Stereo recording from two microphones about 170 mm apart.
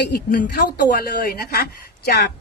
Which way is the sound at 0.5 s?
65° left (ahead or behind).